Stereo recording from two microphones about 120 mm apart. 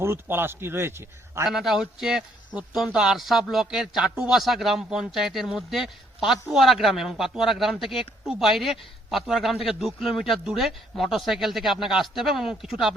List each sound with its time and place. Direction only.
0.0 s speech: 20° right (ahead or behind)
1.5 s a man's voice: 5° right (ahead or behind)